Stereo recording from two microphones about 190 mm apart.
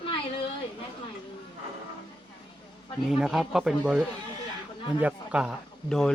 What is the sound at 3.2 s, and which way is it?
A man's voice, centre (ahead or behind).